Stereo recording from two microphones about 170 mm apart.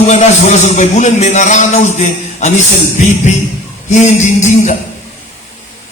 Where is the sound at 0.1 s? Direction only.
45° left (ahead or behind).